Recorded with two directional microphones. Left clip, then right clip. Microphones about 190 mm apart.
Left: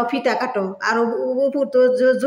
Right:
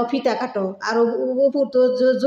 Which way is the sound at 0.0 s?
10° left (ahead or behind).